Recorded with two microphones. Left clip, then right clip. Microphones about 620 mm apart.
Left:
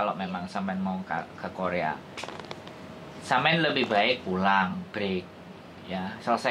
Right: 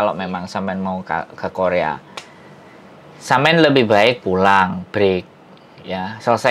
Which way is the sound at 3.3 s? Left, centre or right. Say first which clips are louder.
Right 11 dB; right.